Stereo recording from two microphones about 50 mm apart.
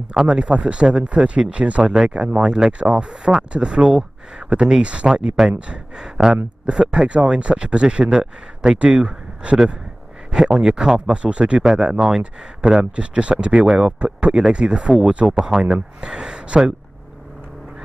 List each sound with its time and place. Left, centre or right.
0.1 s speech: centre
11.6 s speech: centre
13.7 s speech: centre